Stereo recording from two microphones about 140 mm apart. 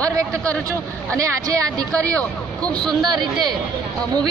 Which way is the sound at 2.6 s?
5° left (ahead or behind).